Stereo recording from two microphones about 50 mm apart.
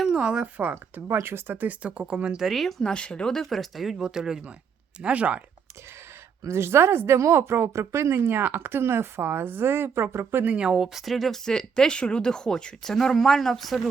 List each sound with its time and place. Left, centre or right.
0.0 s speech: centre
0.5 s speech: right
1.0 s speech: right
1.8 s speech: right
2.4 s speech: centre
2.8 s speech: centre
3.4 s speech: centre
4.0 s speech: centre
5.0 s speech: right
6.4 s speech: right
10.4 s speech: right
10.8 s speech: centre
11.4 s speech: centre